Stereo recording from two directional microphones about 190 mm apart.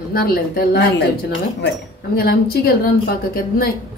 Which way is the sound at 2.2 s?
55° left (ahead or behind).